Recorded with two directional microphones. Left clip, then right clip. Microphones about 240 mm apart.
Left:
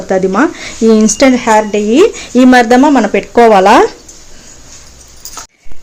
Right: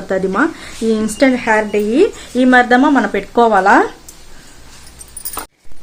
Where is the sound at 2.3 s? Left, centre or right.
Left.